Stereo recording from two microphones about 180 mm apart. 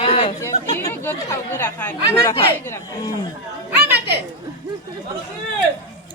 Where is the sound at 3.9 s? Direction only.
65° right (ahead or behind).